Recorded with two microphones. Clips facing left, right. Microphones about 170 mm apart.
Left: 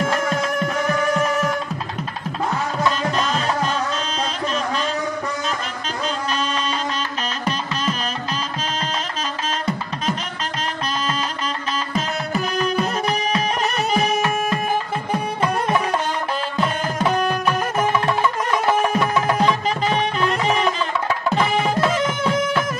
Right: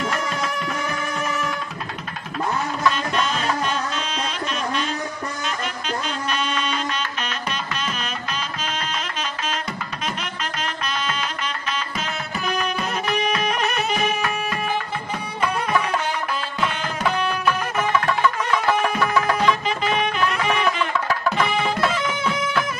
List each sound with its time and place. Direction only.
0.0 s music: 50° left (ahead or behind)
12.4 s music: 40° left (ahead or behind)
16.5 s music: 40° left (ahead or behind)
17.7 s music: 25° left (ahead or behind)
19.3 s music: 35° left (ahead or behind)
21.6 s music: 45° left (ahead or behind)